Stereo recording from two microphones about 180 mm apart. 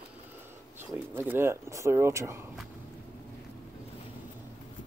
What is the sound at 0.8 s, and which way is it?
Speech, 10° right (ahead or behind).